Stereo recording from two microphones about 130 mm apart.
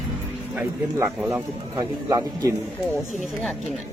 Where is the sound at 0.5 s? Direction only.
15° right (ahead or behind).